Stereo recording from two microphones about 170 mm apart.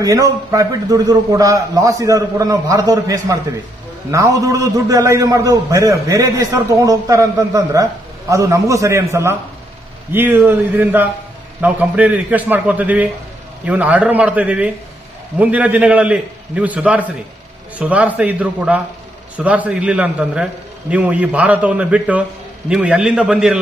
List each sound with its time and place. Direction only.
0.0 s a man's voice: 20° right (ahead or behind); by 23.6 s 5° right (ahead or behind)